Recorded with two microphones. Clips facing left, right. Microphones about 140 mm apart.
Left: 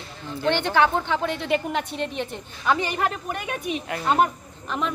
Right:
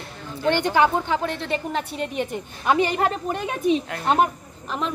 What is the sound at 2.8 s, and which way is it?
Speech, 25° right (ahead or behind).